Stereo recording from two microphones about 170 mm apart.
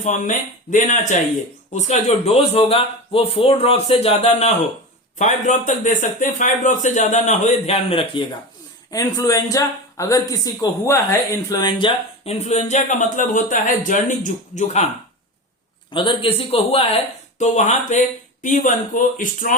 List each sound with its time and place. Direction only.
0.0 s speech: 45° left (ahead or behind)
8.9 s speech: 20° left (ahead or behind); by 14.8 s 45° left (ahead or behind)
15.9 s speech: 30° left (ahead or behind); by 19.5 s 50° left (ahead or behind)